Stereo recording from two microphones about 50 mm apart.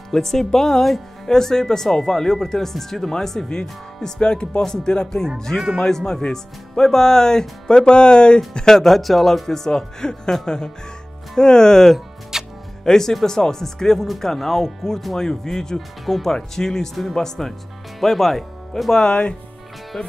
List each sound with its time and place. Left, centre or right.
0.1 s speech: centre
8.5 s speech: centre
12.3 s music: centre
12.8 s speech: centre
19.0 s speech: left